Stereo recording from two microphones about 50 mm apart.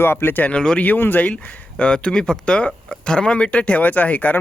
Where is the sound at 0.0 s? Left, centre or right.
Left.